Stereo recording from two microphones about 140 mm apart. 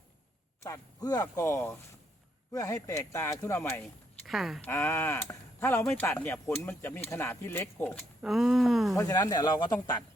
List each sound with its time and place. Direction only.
0.6 s speech: 25° left (ahead or behind)
4.3 s speech: centre (ahead or behind)
4.6 s speech: 20° left (ahead or behind)
7.9 s speech: centre (ahead or behind)
9.0 s speech: 25° left (ahead or behind)